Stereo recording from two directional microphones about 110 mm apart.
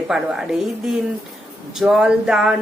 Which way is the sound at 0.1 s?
5° right (ahead or behind).